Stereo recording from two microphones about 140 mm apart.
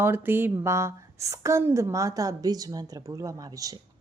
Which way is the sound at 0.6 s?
20° right (ahead or behind).